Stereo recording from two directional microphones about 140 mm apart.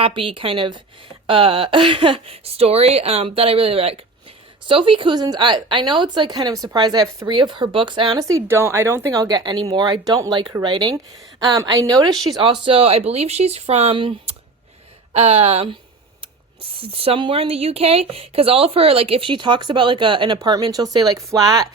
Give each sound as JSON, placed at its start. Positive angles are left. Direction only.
{"t": 0.0, "sound": "speech", "side_deg": -40}
{"t": 8.2, "sound": "speech", "side_deg": -20}
{"t": 12.6, "sound": "speech", "side_deg": -40}
{"t": 15.1, "sound": "speech", "side_deg": -50}
{"t": 16.8, "sound": "speech", "side_deg": -40}